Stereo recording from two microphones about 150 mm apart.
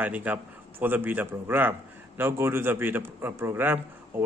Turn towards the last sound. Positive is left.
turn(degrees=-15)  # may be behind; listen again after turning